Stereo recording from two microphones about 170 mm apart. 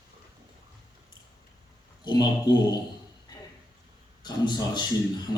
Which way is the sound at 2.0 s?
25° left (ahead or behind).